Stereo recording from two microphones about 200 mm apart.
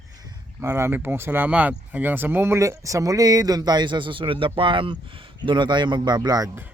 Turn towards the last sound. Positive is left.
turn(degrees=-15)  # may be behind; listen again after turning